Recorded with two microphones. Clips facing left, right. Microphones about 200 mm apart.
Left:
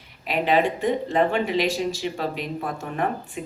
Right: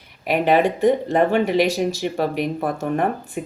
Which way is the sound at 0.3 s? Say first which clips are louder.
Right 4 dB; 55° right (ahead or behind).